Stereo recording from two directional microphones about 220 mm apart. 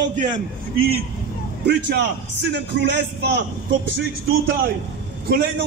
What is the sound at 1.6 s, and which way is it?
A man's voice, 50° right (ahead or behind).